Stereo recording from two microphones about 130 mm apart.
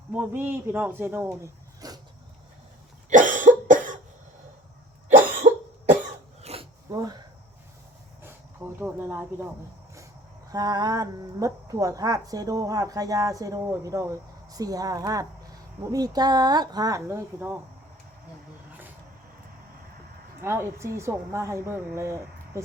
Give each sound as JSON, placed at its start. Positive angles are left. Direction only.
{"t": 0.1, "sound": "speech", "side_deg": -15}
{"t": 3.1, "sound": "cough", "side_deg": -85}
{"t": 5.5, "sound": "cough", "side_deg": -55}
{"t": 6.4, "sound": "dog", "side_deg": -50}
{"t": 6.9, "sound": "a sound", "side_deg": -30}
{"t": 8.2, "sound": "a sound", "side_deg": -15}
{"t": 10.5, "sound": "speech", "side_deg": -30}
{"t": 20.4, "sound": "speech", "side_deg": -20}